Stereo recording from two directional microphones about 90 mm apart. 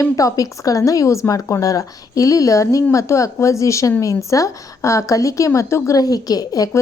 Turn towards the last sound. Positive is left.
turn(degrees=45)  # may be behind; listen again after turning